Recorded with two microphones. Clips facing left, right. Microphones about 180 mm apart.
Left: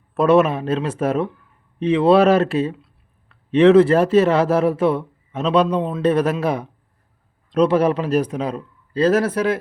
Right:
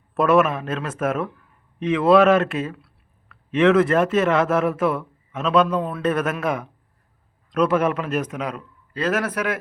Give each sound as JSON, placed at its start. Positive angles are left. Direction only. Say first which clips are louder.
{"t": 0.3, "sound": "a man's voice", "louder": "left 3 dB", "side_deg": 30}